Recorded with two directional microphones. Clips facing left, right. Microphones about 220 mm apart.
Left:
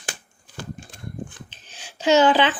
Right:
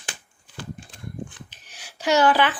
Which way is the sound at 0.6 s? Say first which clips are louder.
Left 1 dB; 45° left (ahead or behind).